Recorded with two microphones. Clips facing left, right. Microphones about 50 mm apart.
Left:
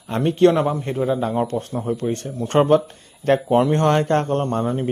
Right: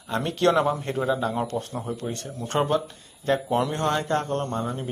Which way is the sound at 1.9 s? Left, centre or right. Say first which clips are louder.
Left 10 dB; left.